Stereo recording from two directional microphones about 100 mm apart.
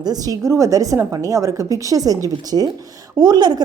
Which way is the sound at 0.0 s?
40° right (ahead or behind).